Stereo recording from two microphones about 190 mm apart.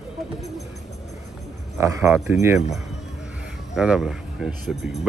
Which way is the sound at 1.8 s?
15° right (ahead or behind).